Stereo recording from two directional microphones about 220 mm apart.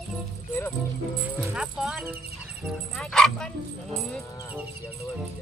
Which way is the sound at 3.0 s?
Centre (ahead or behind).